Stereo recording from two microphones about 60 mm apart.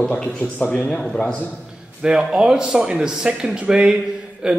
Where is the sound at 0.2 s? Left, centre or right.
Centre.